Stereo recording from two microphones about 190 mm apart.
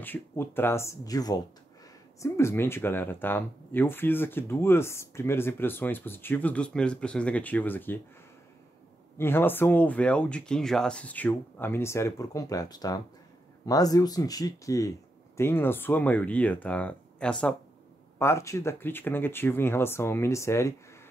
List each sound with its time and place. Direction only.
0.0 s speech: 10° left (ahead or behind)
9.2 s speech: 10° left (ahead or behind)